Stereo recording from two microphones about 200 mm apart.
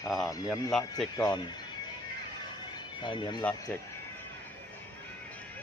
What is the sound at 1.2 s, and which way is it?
Speech, 20° left (ahead or behind).